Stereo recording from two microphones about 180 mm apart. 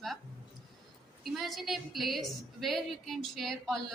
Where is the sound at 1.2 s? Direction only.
Centre (ahead or behind).